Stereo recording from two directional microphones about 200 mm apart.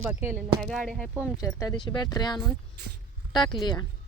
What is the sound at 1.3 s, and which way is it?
Speech, 15° left (ahead or behind).